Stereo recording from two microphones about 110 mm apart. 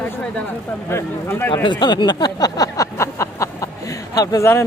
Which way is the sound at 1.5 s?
45° left (ahead or behind).